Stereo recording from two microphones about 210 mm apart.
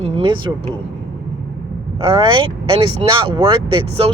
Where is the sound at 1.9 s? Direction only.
25° right (ahead or behind).